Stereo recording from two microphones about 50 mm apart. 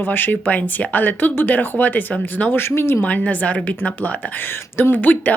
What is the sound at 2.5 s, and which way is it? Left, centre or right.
Speech, left.